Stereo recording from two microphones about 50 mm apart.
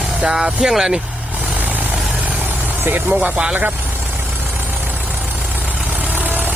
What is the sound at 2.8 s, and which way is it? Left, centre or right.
Speech, right.